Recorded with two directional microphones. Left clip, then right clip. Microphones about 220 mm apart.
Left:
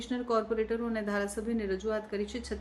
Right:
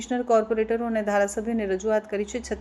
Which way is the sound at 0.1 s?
10° right (ahead or behind).